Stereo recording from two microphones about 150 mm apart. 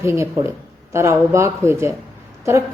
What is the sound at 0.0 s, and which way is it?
A woman's voice, 20° right (ahead or behind).